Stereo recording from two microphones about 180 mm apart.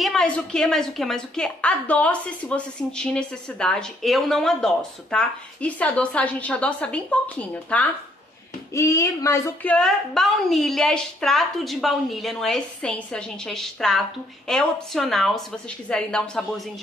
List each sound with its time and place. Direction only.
0.0 s a woman's voice: centre (ahead or behind)